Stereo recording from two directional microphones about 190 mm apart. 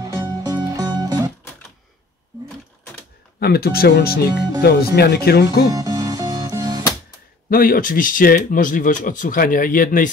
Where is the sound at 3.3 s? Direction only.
55° left (ahead or behind).